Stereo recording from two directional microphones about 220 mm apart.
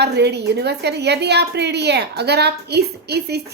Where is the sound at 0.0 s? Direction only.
50° right (ahead or behind).